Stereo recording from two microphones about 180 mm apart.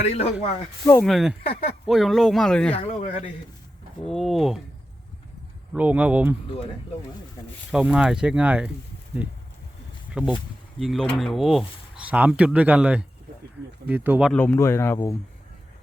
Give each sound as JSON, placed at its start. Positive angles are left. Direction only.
{"t": 0.0, "sound": "speech", "side_deg": 35}
{"t": 1.0, "sound": "speech", "side_deg": 0}
{"t": 2.7, "sound": "speech", "side_deg": 35}
{"t": 4.0, "sound": "speech", "side_deg": 0}
{"t": 5.7, "sound": "speech", "side_deg": -10}
{"t": 7.7, "sound": "speech", "side_deg": -5}
{"t": 14.3, "sound": "speech", "side_deg": 10}